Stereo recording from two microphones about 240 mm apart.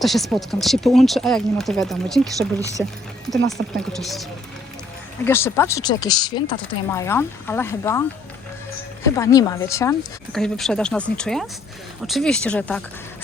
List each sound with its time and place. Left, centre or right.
0.0 s speech: centre
2.6 s speech: centre
3.8 s speech: centre
9.1 s speech: centre
10.3 s speech: centre